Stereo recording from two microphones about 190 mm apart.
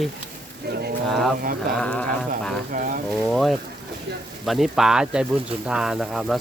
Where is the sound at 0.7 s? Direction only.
55° right (ahead or behind).